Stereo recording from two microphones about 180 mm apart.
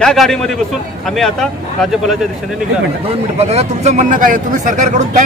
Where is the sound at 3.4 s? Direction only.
35° right (ahead or behind).